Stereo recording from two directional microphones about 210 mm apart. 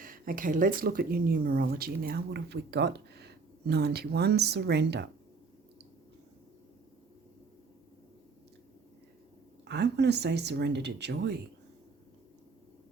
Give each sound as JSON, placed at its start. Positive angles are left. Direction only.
{"t": 0.0, "sound": "speech", "side_deg": -40}
{"t": 9.6, "sound": "speech", "side_deg": -55}